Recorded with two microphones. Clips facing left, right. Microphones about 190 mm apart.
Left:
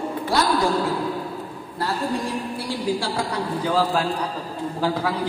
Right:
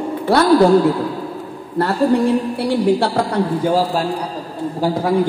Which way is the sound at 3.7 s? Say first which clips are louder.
Right 2 dB; 35° right (ahead or behind).